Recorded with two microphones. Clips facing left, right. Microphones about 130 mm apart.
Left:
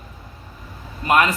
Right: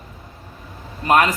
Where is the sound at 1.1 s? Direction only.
35° right (ahead or behind).